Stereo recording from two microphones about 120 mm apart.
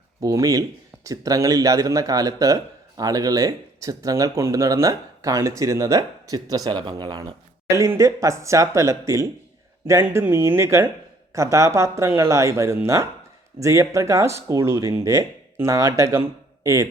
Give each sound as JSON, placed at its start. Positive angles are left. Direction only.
{"t": 0.2, "sound": "speech", "side_deg": -25}